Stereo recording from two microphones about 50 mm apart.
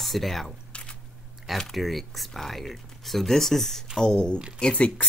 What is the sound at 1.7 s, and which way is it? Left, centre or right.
Speech, centre.